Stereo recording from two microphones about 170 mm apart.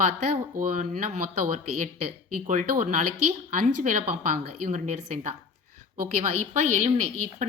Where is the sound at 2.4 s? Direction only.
50° right (ahead or behind).